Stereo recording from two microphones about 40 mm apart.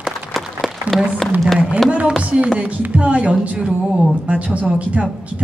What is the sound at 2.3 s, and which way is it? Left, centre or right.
A woman's voice, right.